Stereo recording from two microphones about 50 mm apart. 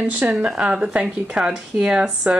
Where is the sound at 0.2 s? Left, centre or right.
Right.